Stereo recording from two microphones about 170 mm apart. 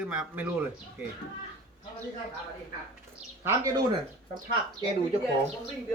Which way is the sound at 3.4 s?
15° right (ahead or behind).